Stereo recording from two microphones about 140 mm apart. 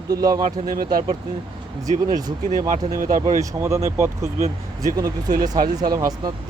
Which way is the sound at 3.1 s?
25° right (ahead or behind).